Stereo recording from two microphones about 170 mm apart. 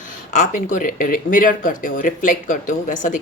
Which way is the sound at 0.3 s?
50° left (ahead or behind).